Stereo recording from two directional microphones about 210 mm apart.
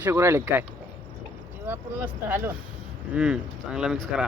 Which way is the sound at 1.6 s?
10° right (ahead or behind).